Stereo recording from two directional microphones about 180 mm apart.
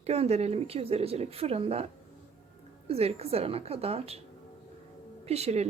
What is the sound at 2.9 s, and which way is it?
Speech, 35° right (ahead or behind).